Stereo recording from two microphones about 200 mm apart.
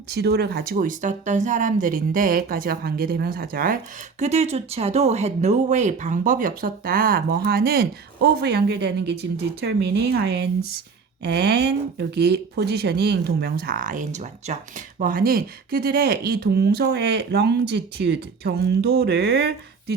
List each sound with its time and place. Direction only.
0.1 s speech: 55° right (ahead or behind)
4.2 s speech: 30° right (ahead or behind); by 20.0 s 55° right (ahead or behind)